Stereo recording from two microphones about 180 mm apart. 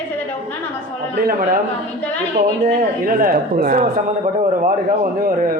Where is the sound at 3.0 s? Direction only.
55° right (ahead or behind).